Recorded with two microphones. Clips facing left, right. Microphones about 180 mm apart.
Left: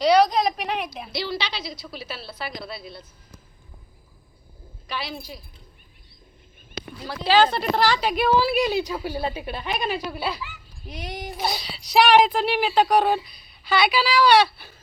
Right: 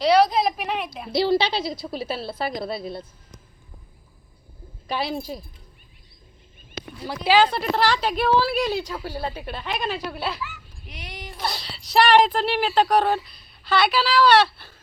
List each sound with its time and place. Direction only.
0.0 s a sound: centre (ahead or behind)
1.5 s a woman's voice: 45° right (ahead or behind)
4.9 s a woman's voice: 45° right (ahead or behind)
7.3 s speech: 10° right (ahead or behind)
7.8 s a woman's voice: 10° left (ahead or behind)
10.8 s speech: 40° left (ahead or behind)
11.3 s a woman's voice: centre (ahead or behind)